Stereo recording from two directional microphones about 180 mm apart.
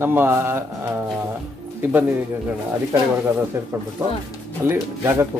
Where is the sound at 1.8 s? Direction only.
10° right (ahead or behind).